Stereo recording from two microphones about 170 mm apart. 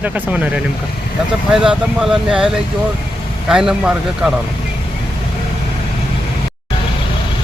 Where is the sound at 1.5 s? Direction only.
5° right (ahead or behind).